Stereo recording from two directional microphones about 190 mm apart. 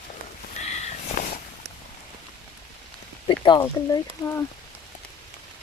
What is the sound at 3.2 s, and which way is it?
Speech, 25° left (ahead or behind).